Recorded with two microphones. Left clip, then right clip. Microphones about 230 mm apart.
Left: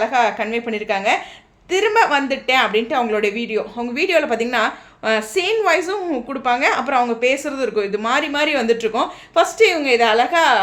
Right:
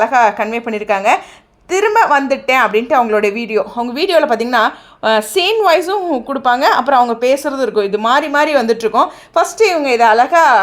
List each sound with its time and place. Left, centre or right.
0.0 s a woman's voice: right